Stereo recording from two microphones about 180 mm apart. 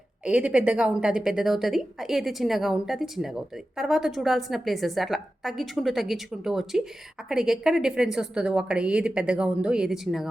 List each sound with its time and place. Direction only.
0.3 s a woman's voice: 5° right (ahead or behind)